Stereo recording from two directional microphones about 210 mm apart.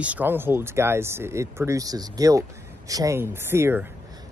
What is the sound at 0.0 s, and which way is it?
Speech, 10° right (ahead or behind).